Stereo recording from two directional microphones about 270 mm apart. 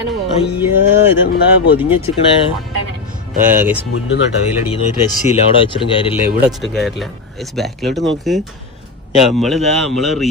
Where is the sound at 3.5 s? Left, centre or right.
Centre.